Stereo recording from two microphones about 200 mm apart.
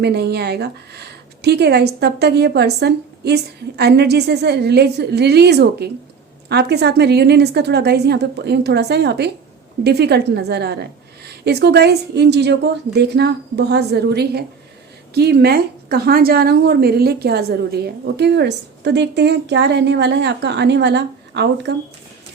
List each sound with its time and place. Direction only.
0.0 s a woman's voice: 55° right (ahead or behind)